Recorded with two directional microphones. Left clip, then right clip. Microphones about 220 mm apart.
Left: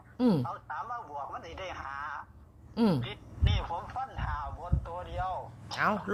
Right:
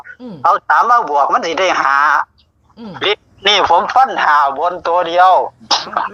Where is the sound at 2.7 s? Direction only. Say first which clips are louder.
Left 4 dB; 40° left (ahead or behind).